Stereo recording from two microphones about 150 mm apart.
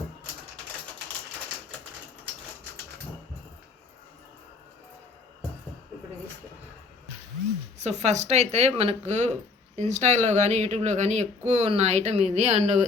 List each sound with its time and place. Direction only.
7.8 s speech: 50° right (ahead or behind)